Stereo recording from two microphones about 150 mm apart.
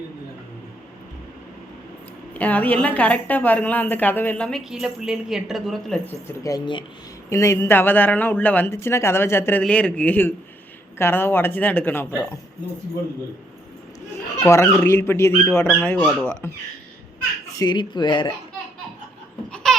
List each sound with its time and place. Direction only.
2.3 s a woman's voice: 10° left (ahead or behind)
6.2 s a woman's voice: 20° left (ahead or behind)
14.4 s a woman's voice: 20° left (ahead or behind)
17.6 s speech: 30° left (ahead or behind)
19.5 s a sound: 5° left (ahead or behind)